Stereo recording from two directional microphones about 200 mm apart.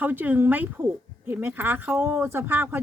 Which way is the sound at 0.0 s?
10° right (ahead or behind).